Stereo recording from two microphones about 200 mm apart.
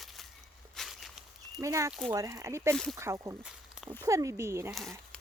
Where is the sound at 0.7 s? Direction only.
Centre (ahead or behind).